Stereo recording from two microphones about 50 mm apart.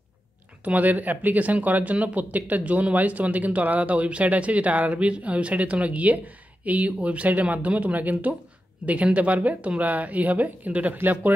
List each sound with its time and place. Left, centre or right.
0.7 s speech: right